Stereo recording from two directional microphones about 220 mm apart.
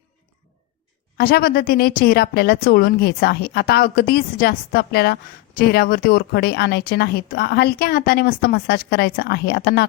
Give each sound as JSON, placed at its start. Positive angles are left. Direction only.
{"t": 1.1, "sound": "speech", "side_deg": 45}